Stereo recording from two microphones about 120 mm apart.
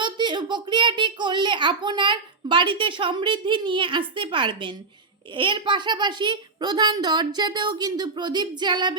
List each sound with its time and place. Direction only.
0.0 s a child's voice: 40° right (ahead or behind)